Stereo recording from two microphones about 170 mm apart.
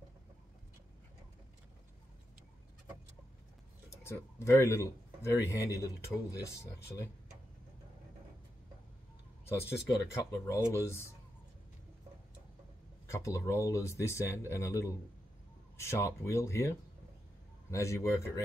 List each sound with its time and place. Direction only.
3.9 s a man's voice: 15° left (ahead or behind)
9.5 s speech: 15° left (ahead or behind)
13.0 s speech: 15° left (ahead or behind)